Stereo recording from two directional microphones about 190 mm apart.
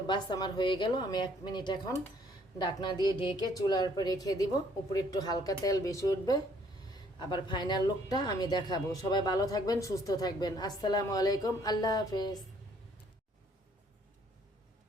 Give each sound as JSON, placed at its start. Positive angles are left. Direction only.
{"t": 0.1, "sound": "speech", "side_deg": 25}